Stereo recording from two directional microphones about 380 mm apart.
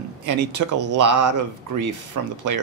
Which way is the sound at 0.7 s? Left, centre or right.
Right.